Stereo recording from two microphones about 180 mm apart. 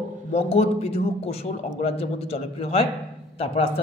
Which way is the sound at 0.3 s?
35° left (ahead or behind).